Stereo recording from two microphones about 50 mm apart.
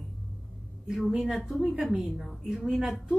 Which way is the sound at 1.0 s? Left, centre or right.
Centre.